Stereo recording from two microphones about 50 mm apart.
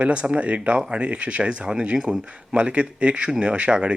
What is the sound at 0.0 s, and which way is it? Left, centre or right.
Speech, right.